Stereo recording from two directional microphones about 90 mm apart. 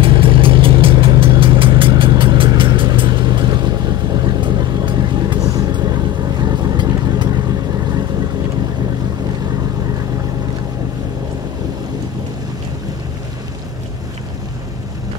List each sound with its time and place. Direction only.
0.0 s vehicle: 75° right (ahead or behind)
5.4 s vehicle: 40° right (ahead or behind)
5.7 s vehicle: 55° right (ahead or behind)